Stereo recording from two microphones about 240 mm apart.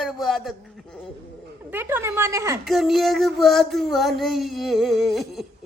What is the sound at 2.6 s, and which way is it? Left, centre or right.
Child singing, centre.